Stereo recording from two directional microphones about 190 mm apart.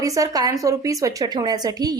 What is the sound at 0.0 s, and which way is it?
A woman's voice, 20° right (ahead or behind).